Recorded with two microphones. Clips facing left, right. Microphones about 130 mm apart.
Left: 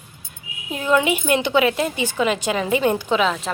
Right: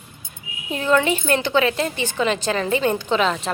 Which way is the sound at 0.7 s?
10° left (ahead or behind).